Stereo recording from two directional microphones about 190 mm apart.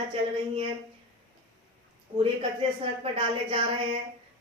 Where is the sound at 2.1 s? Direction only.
30° right (ahead or behind).